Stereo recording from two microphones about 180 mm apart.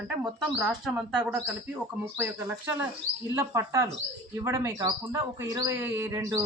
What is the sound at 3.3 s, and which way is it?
A man's voice, 15° right (ahead or behind).